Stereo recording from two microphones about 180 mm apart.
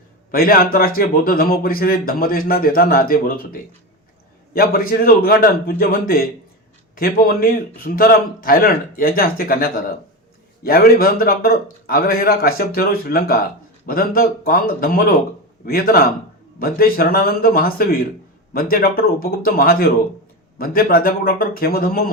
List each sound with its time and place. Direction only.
0.3 s speech: 55° left (ahead or behind)
4.5 s speech: 55° left (ahead or behind)